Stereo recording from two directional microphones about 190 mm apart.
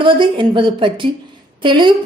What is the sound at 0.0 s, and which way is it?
A woman's voice, 25° right (ahead or behind).